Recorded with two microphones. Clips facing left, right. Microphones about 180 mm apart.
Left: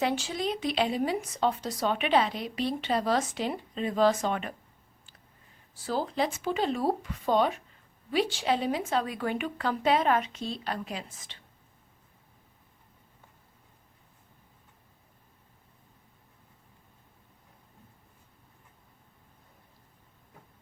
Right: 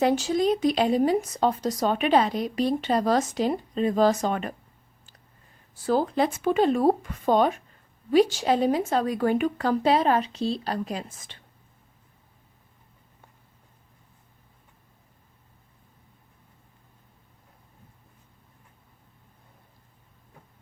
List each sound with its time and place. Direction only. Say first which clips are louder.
0.0 s speech: right 7 dB; 40° right (ahead or behind)
5.7 s a woman's voice: right 7 dB; 50° right (ahead or behind)